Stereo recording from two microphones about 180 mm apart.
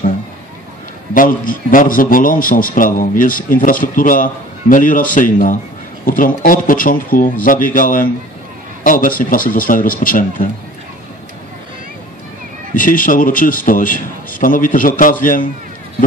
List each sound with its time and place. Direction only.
1.1 s a man's voice: 50° left (ahead or behind)
12.7 s a man's voice: 50° left (ahead or behind)